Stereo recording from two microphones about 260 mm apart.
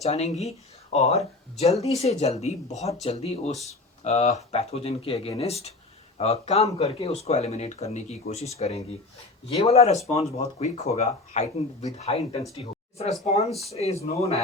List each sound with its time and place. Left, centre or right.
0.0 s speech: left
12.4 s speech: centre
13.0 s speech: left